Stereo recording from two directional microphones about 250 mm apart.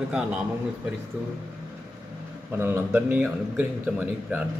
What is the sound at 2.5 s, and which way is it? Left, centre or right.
A man's voice, centre.